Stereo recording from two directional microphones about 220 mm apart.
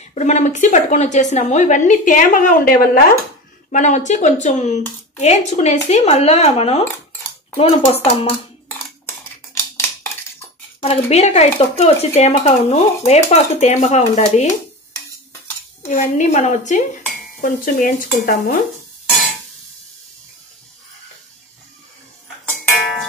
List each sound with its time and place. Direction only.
0.0 s a woman's voice: 30° left (ahead or behind)
10.8 s speech: 30° left (ahead or behind)
15.9 s a woman's voice: 30° left (ahead or behind)